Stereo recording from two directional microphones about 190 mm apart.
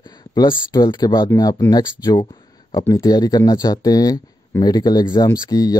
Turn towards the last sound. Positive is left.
turn(degrees=20)  # may be behind; listen again after turning